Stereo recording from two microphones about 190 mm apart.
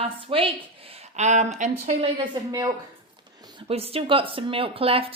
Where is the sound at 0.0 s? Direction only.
30° right (ahead or behind).